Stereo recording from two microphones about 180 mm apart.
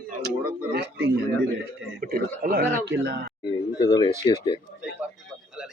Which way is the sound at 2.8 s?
75° right (ahead or behind).